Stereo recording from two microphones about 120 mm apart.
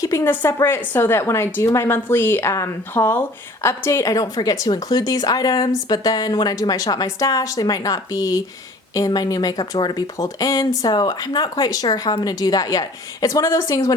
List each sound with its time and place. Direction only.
0.0 s a woman's voice: 25° left (ahead or behind)